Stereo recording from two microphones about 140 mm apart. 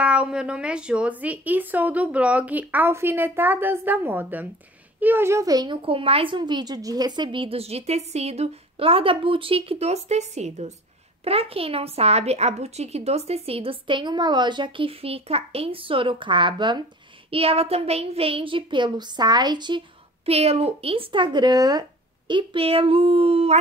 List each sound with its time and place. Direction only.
0.0 s a woman's voice: 10° right (ahead or behind); by 16.8 s 35° right (ahead or behind)
17.3 s speech: 45° right (ahead or behind)
20.2 s speech: 45° right (ahead or behind)